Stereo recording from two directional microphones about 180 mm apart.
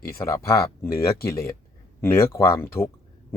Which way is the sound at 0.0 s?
15° left (ahead or behind).